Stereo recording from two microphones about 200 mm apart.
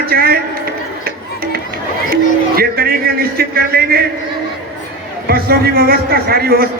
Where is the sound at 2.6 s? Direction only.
50° right (ahead or behind).